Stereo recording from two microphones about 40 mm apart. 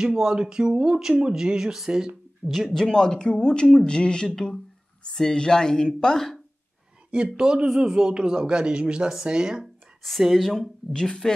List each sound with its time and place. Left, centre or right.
0.0 s speech: centre
2.7 s speech: centre
6.1 s speech: centre
7.1 s speech: right
10.2 s speech: centre
10.9 s speech: centre